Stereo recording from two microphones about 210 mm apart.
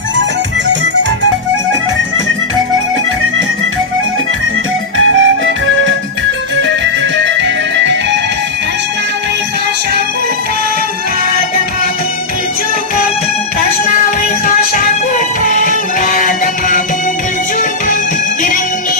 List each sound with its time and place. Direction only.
4.9 s music: 65° right (ahead or behind)
7.3 s music: 60° right (ahead or behind)
14.4 s music: 40° left (ahead or behind)